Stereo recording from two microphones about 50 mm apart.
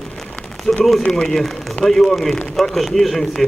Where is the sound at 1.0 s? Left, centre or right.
Centre.